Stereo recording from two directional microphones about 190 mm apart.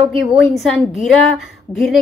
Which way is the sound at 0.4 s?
Centre (ahead or behind).